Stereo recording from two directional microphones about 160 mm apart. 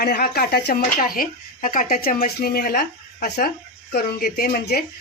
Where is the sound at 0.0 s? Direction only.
75° left (ahead or behind).